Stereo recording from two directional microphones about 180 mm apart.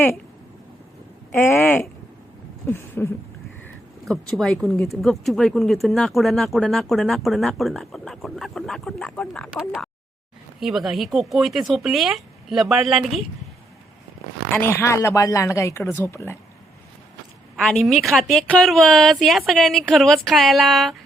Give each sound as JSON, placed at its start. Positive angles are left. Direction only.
{"t": 1.3, "sound": "speech", "side_deg": 10}
{"t": 4.1, "sound": "speech", "side_deg": 0}
{"t": 9.6, "sound": "speech", "side_deg": -5}
{"t": 14.6, "sound": "speech", "side_deg": 15}
{"t": 17.6, "sound": "speech", "side_deg": 0}